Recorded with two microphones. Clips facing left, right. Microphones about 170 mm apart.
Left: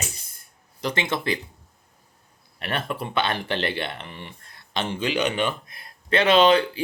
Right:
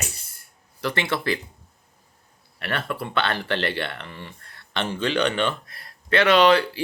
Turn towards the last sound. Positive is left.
turn(degrees=20)  # may be behind; listen again after turning